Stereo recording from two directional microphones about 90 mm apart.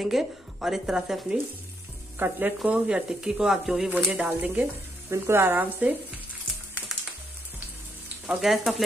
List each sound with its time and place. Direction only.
0.0 s speech: 5° right (ahead or behind)
2.1 s speech: 20° right (ahead or behind)
2.6 s speech: 10° right (ahead or behind)
8.3 s speech: 5° right (ahead or behind)